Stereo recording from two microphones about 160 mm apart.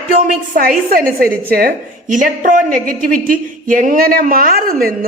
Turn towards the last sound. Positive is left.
turn(degrees=-70)  # may be behind; listen again after turning